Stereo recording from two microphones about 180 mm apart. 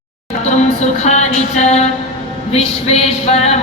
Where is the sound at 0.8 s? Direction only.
40° left (ahead or behind).